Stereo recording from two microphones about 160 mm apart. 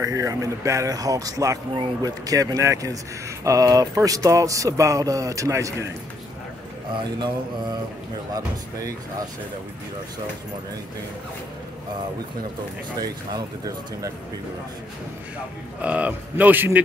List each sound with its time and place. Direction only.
0.0 s speech: 20° right (ahead or behind)
13.0 s speech: 25° right (ahead or behind)
15.8 s speech: 10° right (ahead or behind)